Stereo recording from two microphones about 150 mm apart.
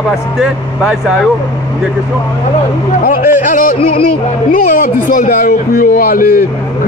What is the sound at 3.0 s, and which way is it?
A man's voice, 65° left (ahead or behind).